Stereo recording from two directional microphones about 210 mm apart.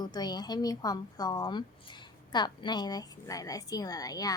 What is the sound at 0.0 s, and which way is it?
A woman's voice, 20° left (ahead or behind).